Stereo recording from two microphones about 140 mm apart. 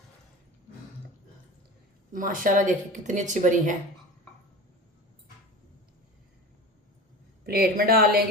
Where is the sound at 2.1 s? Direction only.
75° right (ahead or behind).